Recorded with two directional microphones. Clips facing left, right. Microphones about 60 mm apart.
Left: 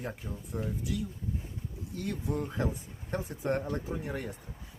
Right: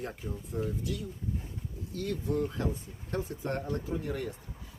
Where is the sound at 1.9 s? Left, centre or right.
Centre.